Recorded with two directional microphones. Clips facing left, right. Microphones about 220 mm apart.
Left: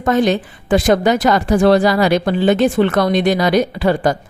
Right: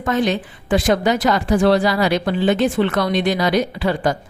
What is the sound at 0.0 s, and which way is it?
A woman's voice, 40° left (ahead or behind).